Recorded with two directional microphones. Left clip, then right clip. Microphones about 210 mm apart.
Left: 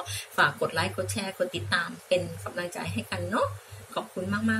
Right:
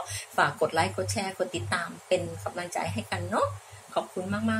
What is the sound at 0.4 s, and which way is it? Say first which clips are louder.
Speech: even; 20° right (ahead or behind).